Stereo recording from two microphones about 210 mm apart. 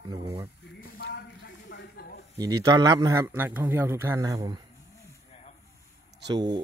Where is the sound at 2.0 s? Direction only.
45° left (ahead or behind).